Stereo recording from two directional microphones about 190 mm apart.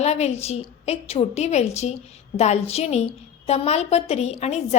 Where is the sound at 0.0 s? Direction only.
35° left (ahead or behind).